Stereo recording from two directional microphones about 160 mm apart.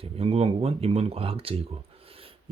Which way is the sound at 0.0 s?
40° right (ahead or behind).